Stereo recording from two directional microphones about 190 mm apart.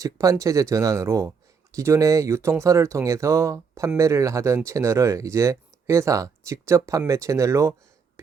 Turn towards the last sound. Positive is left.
turn(degrees=-15)  # may be behind; listen again after turning